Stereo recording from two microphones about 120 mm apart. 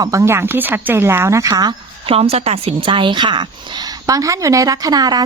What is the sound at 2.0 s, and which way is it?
A woman's voice, 55° right (ahead or behind).